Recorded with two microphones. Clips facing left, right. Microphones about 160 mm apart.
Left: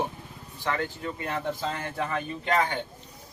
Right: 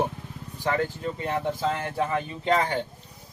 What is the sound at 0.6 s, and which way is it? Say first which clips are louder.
A man's voice: right 4 dB; 30° right (ahead or behind).